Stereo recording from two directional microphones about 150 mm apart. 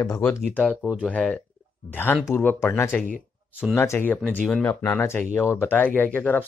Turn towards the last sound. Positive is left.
turn(degrees=10)  # may be behind; listen again after turning